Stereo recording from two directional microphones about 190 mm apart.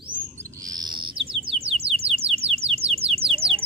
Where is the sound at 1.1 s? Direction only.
30° right (ahead or behind).